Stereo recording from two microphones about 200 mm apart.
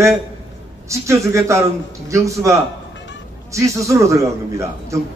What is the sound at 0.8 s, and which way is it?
A man's voice, 15° right (ahead or behind).